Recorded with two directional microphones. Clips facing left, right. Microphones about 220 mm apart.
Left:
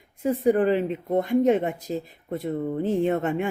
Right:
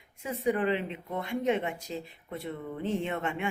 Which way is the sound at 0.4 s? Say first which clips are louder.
Left 7 dB; 45° left (ahead or behind).